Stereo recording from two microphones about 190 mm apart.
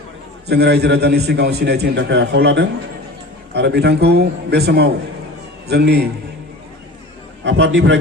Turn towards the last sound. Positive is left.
turn(degrees=-75)  # may be behind; listen again after turning